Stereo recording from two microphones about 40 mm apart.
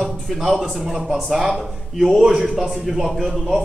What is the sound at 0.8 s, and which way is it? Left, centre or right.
A man's voice, centre.